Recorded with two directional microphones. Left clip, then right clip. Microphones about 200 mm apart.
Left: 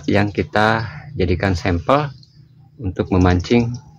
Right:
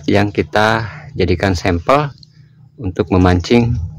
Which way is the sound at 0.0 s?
45° right (ahead or behind).